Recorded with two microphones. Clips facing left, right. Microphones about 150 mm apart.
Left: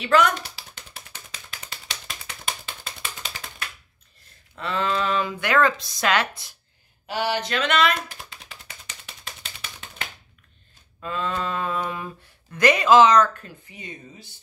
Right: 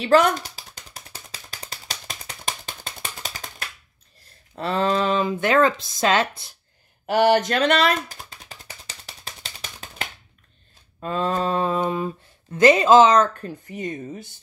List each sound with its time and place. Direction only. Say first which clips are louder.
0.0 s typing: right 3 dB; 35° right (ahead or behind)
4.6 s speech: right 4 dB; 35° right (ahead or behind)
7.1 s a sound: right 8 dB; 55° right (ahead or behind); by 10.0 s 35° right (ahead or behind)
11.0 s speech: right 4 dB; 40° right (ahead or behind)
13.4 s speech: right 11 dB; 45° right (ahead or behind)